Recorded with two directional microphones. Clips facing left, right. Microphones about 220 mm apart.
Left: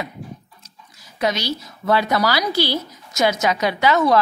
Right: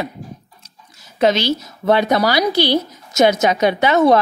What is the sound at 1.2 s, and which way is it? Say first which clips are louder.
Speech: right 7 dB; 25° right (ahead or behind).